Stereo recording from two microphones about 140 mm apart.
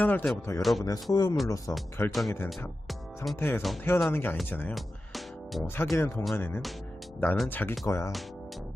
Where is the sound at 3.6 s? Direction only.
Centre (ahead or behind).